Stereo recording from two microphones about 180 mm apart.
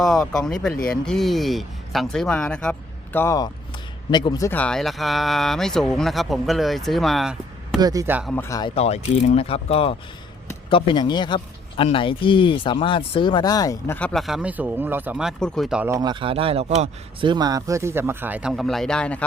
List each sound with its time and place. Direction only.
0.0 s speech: centre (ahead or behind)
7.8 s speech: 20° right (ahead or behind)
8.3 s speech: 15° left (ahead or behind)
8.7 s a man's voice: 35° left (ahead or behind); by 15.9 s centre (ahead or behind)
15.9 s speech: 20° right (ahead or behind); by 19.2 s 5° left (ahead or behind)